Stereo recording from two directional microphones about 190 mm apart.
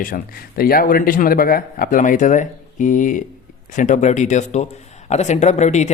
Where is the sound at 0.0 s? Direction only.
50° left (ahead or behind).